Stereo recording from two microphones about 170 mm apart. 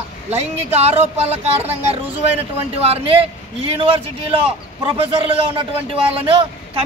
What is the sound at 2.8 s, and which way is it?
Speech, 35° right (ahead or behind).